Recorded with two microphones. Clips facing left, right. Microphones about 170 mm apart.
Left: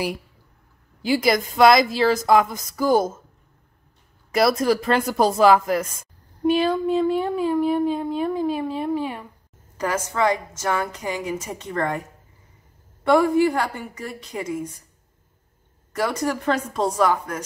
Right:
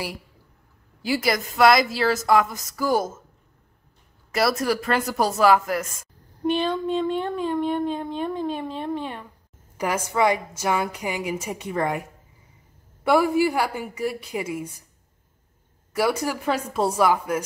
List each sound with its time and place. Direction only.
1.0 s a woman's voice: 20° left (ahead or behind)
4.3 s a woman's voice: 20° left (ahead or behind)
6.4 s speech: 10° left (ahead or behind)
9.8 s a woman's voice: 10° right (ahead or behind)
15.9 s a woman's voice: 10° right (ahead or behind)